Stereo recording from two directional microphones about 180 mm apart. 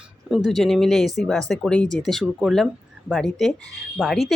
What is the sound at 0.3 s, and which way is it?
Speech, centre (ahead or behind).